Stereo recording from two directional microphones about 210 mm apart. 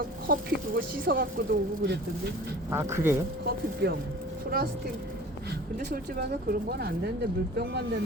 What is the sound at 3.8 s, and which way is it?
Speech, 50° right (ahead or behind).